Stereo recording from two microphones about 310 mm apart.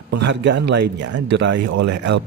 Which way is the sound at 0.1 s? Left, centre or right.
Right.